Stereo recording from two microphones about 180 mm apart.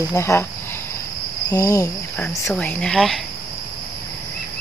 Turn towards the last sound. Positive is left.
turn(degrees=0)  # may be behind; listen again after turning